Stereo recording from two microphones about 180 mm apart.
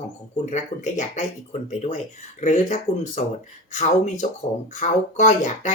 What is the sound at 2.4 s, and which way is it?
Speech, 40° left (ahead or behind).